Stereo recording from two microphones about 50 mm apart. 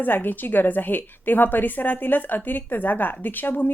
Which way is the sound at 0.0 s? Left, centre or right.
Left.